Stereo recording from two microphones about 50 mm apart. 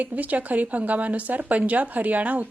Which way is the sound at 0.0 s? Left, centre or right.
Right.